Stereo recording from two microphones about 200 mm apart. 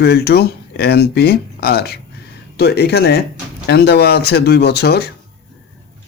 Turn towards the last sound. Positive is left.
turn(degrees=55)  # may be behind; listen again after turning